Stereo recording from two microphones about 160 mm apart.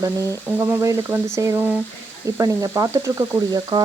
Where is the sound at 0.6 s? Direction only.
15° right (ahead or behind).